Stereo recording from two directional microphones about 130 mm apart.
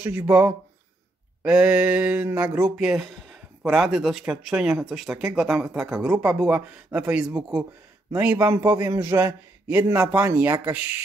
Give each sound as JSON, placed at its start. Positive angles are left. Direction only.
{"t": 0.0, "sound": "a man's voice", "side_deg": -15}